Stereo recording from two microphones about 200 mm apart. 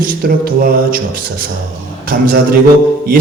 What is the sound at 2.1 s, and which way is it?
Speech, 45° right (ahead or behind).